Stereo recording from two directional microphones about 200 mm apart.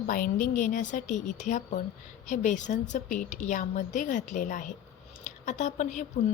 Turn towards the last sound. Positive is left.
turn(degrees=35)  # may be behind; listen again after turning